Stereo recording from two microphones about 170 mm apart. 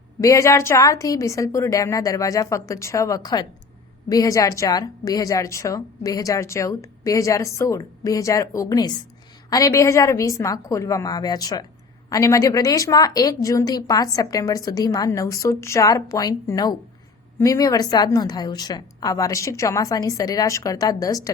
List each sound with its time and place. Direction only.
0.2 s a woman's voice: 20° left (ahead or behind)